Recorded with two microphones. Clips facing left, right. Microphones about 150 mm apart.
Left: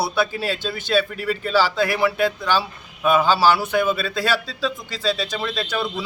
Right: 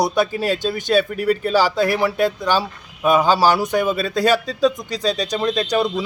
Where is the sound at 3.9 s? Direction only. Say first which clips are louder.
Right 5 dB; 40° right (ahead or behind).